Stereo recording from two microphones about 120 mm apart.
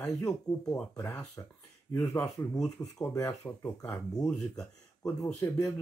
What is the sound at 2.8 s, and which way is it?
Speech, 25° left (ahead or behind).